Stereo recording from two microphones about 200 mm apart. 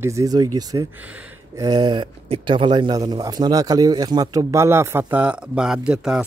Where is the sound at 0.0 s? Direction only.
15° right (ahead or behind).